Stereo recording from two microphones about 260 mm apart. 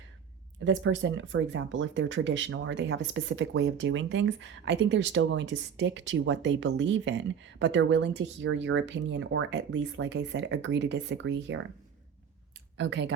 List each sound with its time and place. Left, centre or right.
0.6 s speech: right
12.7 s speech: right